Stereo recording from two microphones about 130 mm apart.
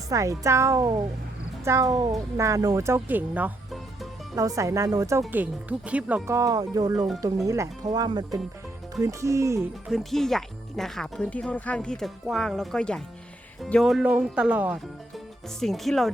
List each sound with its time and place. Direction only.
0.1 s speech: 25° right (ahead or behind)
4.4 s speech: 25° right (ahead or behind)
5.3 s speech: 10° right (ahead or behind)
6.2 s speech: 25° right (ahead or behind)
9.9 s speech: centre (ahead or behind)
14.0 s speech: 10° right (ahead or behind)
15.6 s speech: centre (ahead or behind)